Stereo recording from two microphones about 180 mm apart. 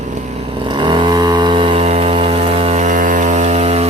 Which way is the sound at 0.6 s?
25° right (ahead or behind).